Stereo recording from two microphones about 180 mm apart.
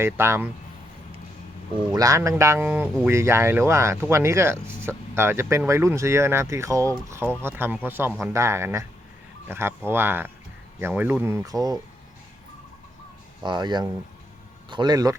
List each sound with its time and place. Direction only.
0.0 s speech: 15° right (ahead or behind)
1.7 s speech: 20° right (ahead or behind)
13.4 s speech: 25° right (ahead or behind)